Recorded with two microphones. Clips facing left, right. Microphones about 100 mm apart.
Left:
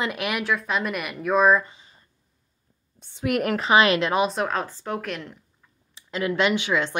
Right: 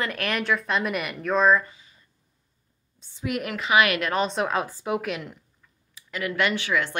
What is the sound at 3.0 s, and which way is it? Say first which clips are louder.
Speech: left 5 dB; 55° left (ahead or behind).